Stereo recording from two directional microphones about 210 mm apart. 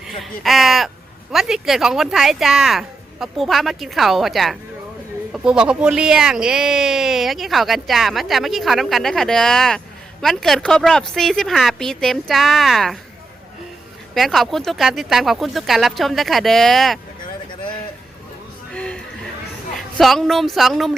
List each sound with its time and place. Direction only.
0.2 s speech: centre (ahead or behind)
14.1 s speech: centre (ahead or behind)
18.7 s a sound: 5° left (ahead or behind)
19.7 s a woman's voice: centre (ahead or behind)